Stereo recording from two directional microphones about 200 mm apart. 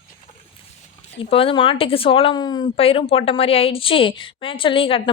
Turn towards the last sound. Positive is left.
turn(degrees=25)  # may be behind; listen again after turning